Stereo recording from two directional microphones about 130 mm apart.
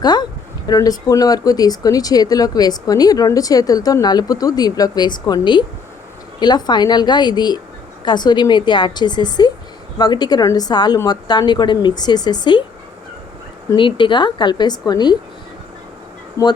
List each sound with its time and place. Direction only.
0.0 s a woman's voice: 35° left (ahead or behind)
13.7 s a woman's voice: 40° left (ahead or behind)
16.4 s speech: 25° left (ahead or behind)